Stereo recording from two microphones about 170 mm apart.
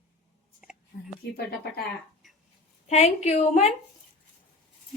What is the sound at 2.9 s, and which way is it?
Speech, 40° left (ahead or behind).